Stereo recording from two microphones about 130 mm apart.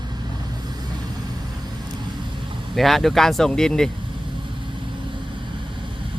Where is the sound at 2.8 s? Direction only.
Centre (ahead or behind).